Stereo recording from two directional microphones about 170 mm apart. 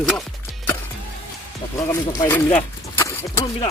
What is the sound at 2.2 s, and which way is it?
Speech, 10° left (ahead or behind).